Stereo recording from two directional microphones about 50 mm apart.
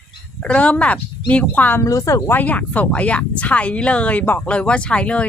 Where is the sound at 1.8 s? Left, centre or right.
Left.